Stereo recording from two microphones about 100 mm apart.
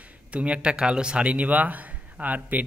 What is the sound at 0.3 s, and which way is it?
A man's voice, 10° right (ahead or behind).